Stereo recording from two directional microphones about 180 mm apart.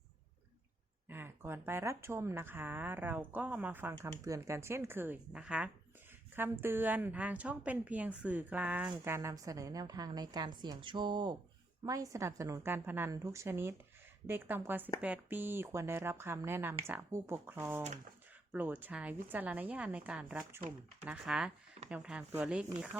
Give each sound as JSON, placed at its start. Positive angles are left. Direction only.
{"t": 1.0, "sound": "a woman's voice", "side_deg": -10}